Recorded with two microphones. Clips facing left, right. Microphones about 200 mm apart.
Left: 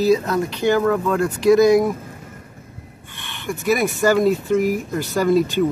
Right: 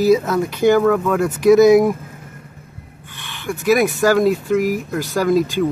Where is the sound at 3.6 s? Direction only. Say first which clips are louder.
Right 3 dB; centre (ahead or behind).